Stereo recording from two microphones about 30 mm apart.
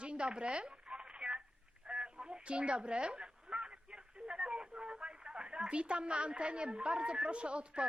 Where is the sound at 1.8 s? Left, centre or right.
Right.